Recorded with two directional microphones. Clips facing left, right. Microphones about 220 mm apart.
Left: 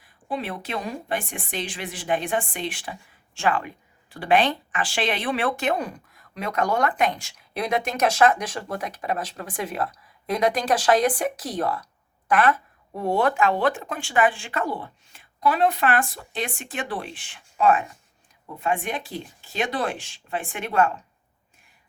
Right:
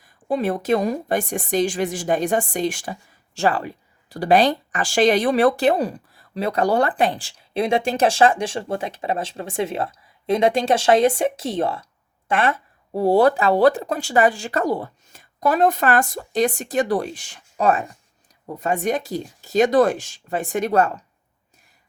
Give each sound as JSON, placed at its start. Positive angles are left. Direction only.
{"t": 0.0, "sound": "speech", "side_deg": -45}